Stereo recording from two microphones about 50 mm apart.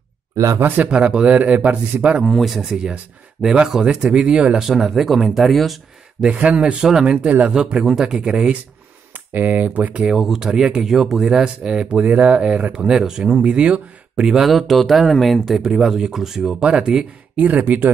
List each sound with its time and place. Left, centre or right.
0.8 s speech: centre
2.2 s speech: centre
6.2 s speech: right
7.1 s speech: right
7.5 s speech: centre
9.1 s speech: right
10.0 s speech: centre
12.0 s speech: right
12.7 s speech: centre
14.4 s speech: centre
15.6 s speech: centre
16.5 s speech: centre
17.4 s speech: right